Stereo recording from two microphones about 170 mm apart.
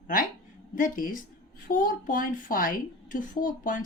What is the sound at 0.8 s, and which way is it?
A woman's voice, 55° left (ahead or behind).